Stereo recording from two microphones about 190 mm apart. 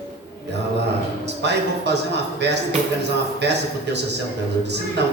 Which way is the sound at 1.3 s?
65° right (ahead or behind).